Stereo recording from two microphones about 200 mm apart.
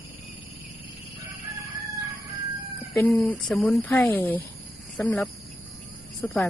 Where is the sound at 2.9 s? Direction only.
5° left (ahead or behind).